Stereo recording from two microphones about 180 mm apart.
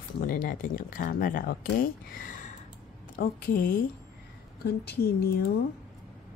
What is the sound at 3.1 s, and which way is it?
Speech, 55° left (ahead or behind).